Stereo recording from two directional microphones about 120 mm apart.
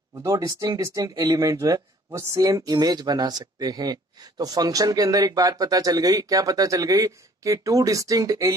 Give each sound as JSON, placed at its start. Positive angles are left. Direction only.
{"t": 0.1, "sound": "speech", "side_deg": -30}